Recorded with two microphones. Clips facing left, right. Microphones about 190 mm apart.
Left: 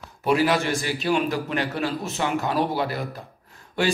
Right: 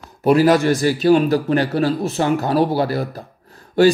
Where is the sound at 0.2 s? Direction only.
40° right (ahead or behind).